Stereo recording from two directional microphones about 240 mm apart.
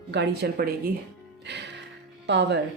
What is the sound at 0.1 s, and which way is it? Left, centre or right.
Speech, right.